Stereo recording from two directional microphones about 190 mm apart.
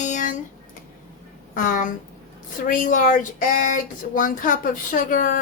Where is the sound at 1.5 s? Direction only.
45° left (ahead or behind).